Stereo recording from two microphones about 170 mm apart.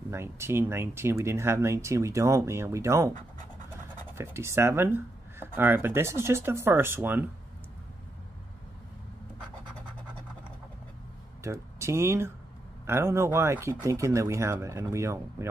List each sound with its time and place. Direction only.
0.1 s speech: 15° right (ahead or behind)
4.2 s speech: 15° right (ahead or behind)
11.4 s speech: 15° right (ahead or behind)